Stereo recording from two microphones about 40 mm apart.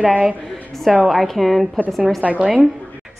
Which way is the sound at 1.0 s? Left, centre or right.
Centre.